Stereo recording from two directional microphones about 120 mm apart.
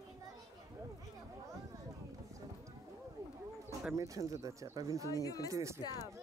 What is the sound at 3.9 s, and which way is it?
Speech, 30° right (ahead or behind).